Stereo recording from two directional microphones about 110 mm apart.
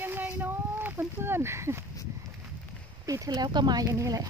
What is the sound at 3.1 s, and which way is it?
Speech, 35° right (ahead or behind).